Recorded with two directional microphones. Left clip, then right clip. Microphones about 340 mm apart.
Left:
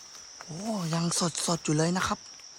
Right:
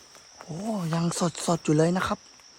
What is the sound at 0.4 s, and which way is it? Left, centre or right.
Speech, centre.